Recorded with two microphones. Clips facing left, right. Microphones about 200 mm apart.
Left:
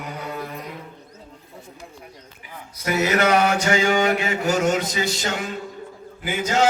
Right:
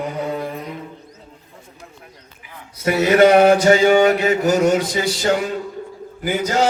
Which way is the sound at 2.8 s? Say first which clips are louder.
Right 7 dB; 30° right (ahead or behind).